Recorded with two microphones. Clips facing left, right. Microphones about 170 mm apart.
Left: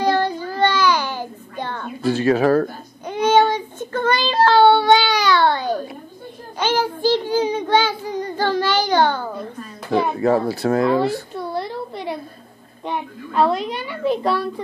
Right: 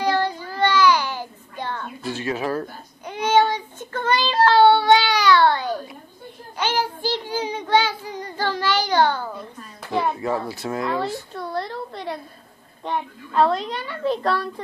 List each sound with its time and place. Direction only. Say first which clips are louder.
0.0 s child singing: left 3 dB; 30° left (ahead or behind)
2.4 s speech: left 9 dB; 65° left (ahead or behind)
3.1 s child singing: left 3 dB; 25° left (ahead or behind)
10.3 s speech: left 7 dB; 35° left (ahead or behind)
11.3 s a sound: left 2 dB; 5° left (ahead or behind)
12.8 s a woman's voice: left 1 dB; 5° left (ahead or behind)